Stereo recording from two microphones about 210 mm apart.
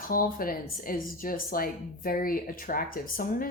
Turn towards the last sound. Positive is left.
turn(degrees=45)  # may be behind; listen again after turning